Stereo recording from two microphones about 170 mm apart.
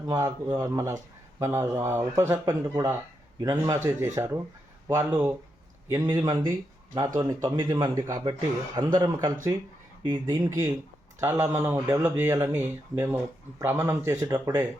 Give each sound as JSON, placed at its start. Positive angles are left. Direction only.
{"t": 0.1, "sound": "a man's voice", "side_deg": -20}